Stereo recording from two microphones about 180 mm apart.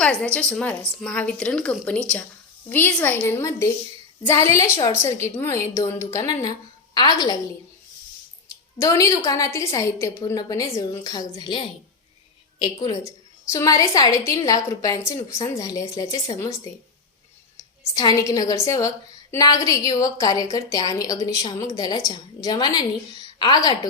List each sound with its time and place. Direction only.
0.0 s a woman's voice: 5° left (ahead or behind)
8.8 s a woman's voice: 20° left (ahead or behind)
17.9 s a woman's voice: 20° left (ahead or behind)